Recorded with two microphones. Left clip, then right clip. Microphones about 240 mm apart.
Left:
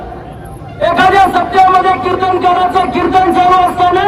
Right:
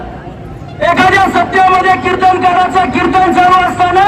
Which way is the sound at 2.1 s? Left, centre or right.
Right.